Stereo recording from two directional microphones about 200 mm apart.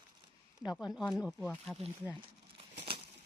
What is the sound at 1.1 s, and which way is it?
Speech, centre (ahead or behind).